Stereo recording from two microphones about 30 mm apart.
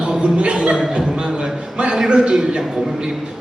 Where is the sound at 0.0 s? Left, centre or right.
Right.